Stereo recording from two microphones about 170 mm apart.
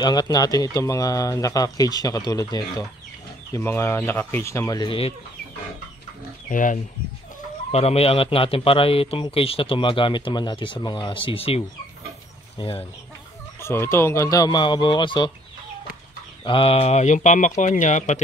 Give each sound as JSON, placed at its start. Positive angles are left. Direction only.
{"t": 0.0, "sound": "speech", "side_deg": 25}
{"t": 6.5, "sound": "speech", "side_deg": 50}
{"t": 7.7, "sound": "a man's voice", "side_deg": 35}
{"t": 13.6, "sound": "speech", "side_deg": 15}
{"t": 16.4, "sound": "a man's voice", "side_deg": 30}